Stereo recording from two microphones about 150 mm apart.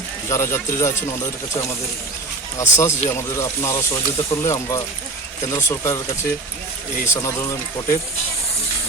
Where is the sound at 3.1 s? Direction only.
20° left (ahead or behind).